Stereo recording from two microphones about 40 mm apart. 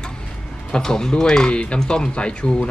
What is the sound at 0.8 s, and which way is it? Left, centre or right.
Speech, centre.